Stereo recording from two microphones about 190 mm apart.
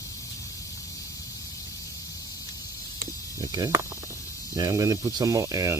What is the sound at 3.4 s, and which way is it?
Speech, 20° right (ahead or behind).